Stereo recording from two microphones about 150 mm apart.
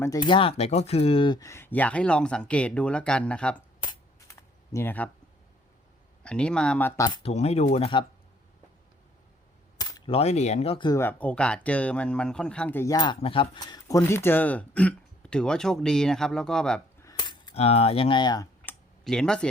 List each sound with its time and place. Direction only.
0.0 s speech: 25° left (ahead or behind); by 3.6 s 10° left (ahead or behind)
4.3 s computer keyboard: 20° left (ahead or behind)
6.2 s speech: 5° left (ahead or behind)
7.1 s speech: 40° left (ahead or behind)
10.1 s speech: 45° left (ahead or behind)
10.8 s speech: 20° left (ahead or behind)
11.2 s speech: 10° left (ahead or behind)
13.0 s speech: 35° left (ahead or behind); by 16.8 s 5° left (ahead or behind)
17.0 s coin: 25° left (ahead or behind)
17.5 s speech: 45° left (ahead or behind)
19.0 s speech: 5° left (ahead or behind)